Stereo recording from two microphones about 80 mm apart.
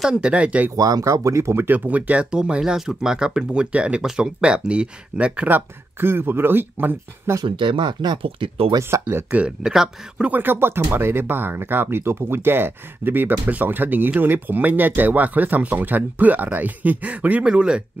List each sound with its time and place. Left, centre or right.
0.0 s speech: centre
0.7 s speech: right; by 5.6 s centre
5.9 s speech: right
7.4 s speech: right
8.7 s speech: right
9.3 s speech: centre